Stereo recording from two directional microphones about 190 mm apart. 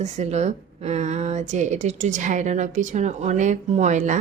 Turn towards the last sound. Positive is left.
turn(degrees=-40)  # may be behind; listen again after turning